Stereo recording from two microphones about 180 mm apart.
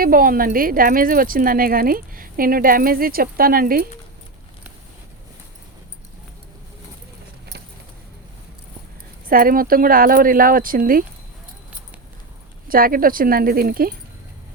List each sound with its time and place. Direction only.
0.0 s speech: 55° right (ahead or behind)
9.2 s speech: 50° right (ahead or behind)
12.6 s speech: 55° right (ahead or behind)